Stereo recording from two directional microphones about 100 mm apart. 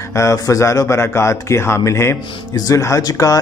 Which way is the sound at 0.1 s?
30° left (ahead or behind).